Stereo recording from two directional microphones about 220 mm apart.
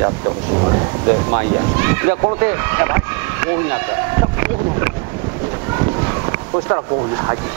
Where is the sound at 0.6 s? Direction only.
25° right (ahead or behind).